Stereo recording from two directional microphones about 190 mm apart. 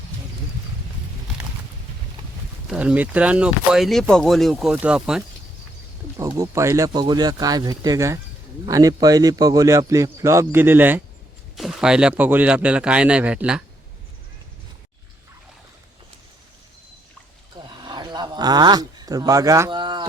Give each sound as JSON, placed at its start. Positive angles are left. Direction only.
{"t": 2.6, "sound": "a man's voice", "side_deg": -5}
{"t": 6.1, "sound": "a man's voice", "side_deg": -15}
{"t": 17.6, "sound": "a sound", "side_deg": -25}